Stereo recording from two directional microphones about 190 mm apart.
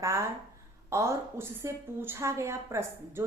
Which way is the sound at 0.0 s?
15° right (ahead or behind).